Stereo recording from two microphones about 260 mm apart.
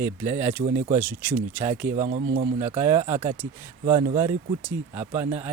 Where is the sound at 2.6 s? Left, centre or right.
Centre.